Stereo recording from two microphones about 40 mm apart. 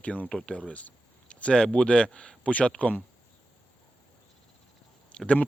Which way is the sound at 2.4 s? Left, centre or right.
Left.